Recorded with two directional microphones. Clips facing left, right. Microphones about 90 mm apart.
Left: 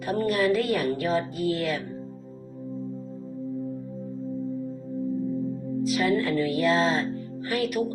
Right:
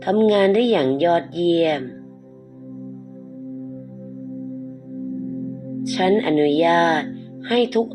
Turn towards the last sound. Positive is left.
turn(degrees=-65)  # may be behind; listen again after turning